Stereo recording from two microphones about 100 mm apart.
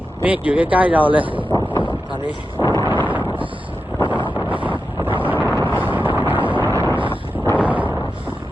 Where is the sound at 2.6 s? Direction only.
35° left (ahead or behind).